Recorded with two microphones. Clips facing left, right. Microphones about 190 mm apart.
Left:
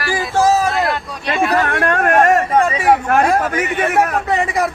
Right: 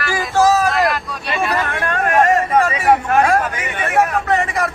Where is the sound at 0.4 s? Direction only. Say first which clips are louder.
Even; 25° left (ahead or behind).